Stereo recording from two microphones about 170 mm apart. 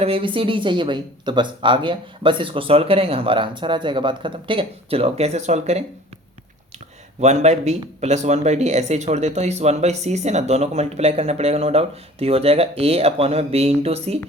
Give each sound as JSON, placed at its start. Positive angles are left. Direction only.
{"t": 0.0, "sound": "speech", "side_deg": -30}
{"t": 7.2, "sound": "speech", "side_deg": -40}